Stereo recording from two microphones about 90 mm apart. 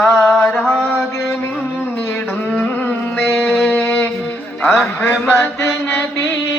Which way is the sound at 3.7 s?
20° left (ahead or behind).